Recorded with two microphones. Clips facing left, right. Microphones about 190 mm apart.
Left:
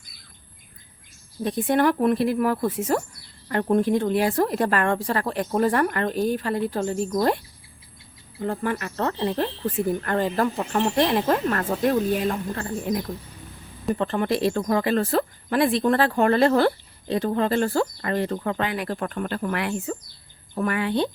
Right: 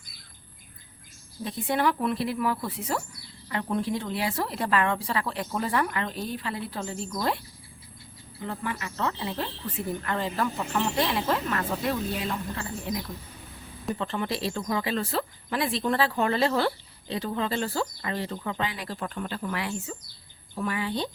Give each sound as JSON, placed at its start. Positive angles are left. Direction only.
{"t": 1.5, "sound": "speech", "side_deg": 50}
{"t": 8.4, "sound": "speech", "side_deg": 50}